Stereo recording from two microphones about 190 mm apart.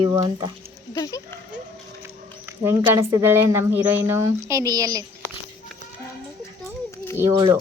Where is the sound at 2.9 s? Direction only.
15° right (ahead or behind).